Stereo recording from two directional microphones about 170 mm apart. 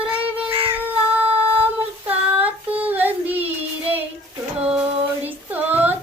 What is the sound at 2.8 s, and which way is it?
Child singing, 10° right (ahead or behind).